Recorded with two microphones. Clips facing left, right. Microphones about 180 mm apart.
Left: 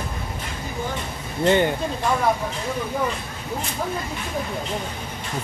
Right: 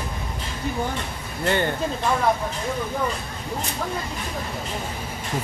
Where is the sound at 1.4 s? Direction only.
20° left (ahead or behind).